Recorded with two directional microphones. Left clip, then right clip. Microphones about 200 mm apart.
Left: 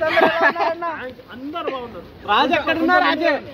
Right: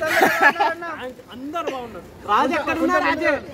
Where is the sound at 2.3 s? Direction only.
35° left (ahead or behind).